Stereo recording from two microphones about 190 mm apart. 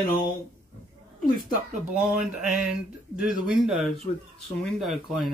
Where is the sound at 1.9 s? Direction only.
5° right (ahead or behind).